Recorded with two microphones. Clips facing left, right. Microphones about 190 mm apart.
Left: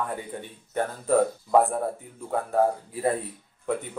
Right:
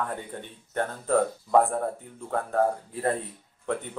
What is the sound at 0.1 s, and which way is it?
Speech, 10° left (ahead or behind).